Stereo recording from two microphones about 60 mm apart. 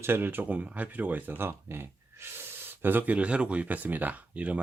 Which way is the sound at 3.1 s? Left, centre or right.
Centre.